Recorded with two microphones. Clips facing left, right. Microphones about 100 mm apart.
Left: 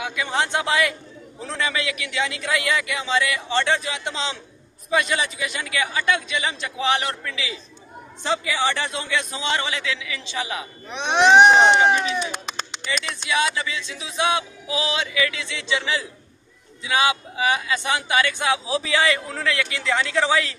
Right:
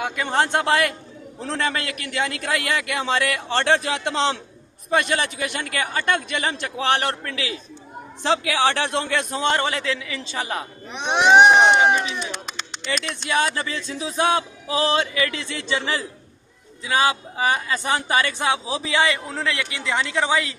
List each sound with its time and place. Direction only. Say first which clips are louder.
0.0 s a man's voice: right 3 dB; 50° right (ahead or behind)
8.2 s speech: right 3 dB; 70° right (ahead or behind); by 10.7 s 45° right (ahead or behind)
10.9 s speech: left 1 dB; 10° right (ahead or behind)
12.9 s speech: right 1 dB; 50° right (ahead or behind)
18.4 s a man's voice: even; 25° right (ahead or behind)